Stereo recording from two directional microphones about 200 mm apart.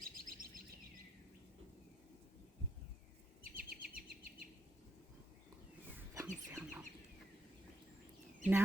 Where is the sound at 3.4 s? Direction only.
45° right (ahead or behind).